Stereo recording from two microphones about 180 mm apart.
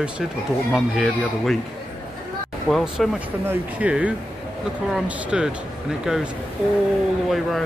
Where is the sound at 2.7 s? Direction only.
Centre (ahead or behind).